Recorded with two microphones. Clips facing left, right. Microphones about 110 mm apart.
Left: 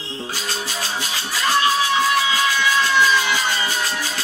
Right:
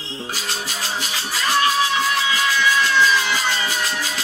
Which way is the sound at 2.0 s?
15° left (ahead or behind).